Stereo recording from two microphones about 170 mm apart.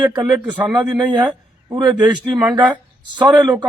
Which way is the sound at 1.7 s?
25° right (ahead or behind).